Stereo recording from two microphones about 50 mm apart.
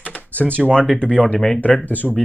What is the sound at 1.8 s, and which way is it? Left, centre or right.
Speech, left.